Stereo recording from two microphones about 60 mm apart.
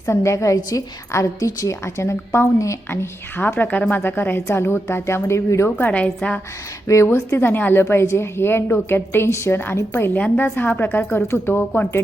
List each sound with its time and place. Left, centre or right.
0.0 s a woman's voice: left
2.9 s a woman's voice: left
5.7 s a woman's voice: left
6.8 s a woman's voice: left
10.2 s a woman's voice: left
10.4 s a woman's voice: left